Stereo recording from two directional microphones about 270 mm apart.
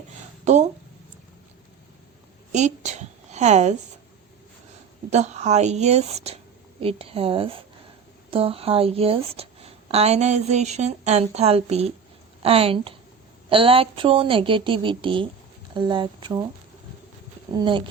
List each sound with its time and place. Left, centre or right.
0.4 s speech: right
2.5 s a sound: right
5.1 s a woman's voice: right
17.5 s speech: centre